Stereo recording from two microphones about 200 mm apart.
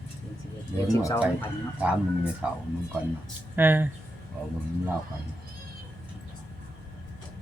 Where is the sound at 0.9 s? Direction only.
15° left (ahead or behind).